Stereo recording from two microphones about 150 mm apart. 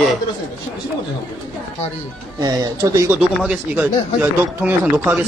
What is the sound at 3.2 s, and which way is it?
Speech, 10° right (ahead or behind).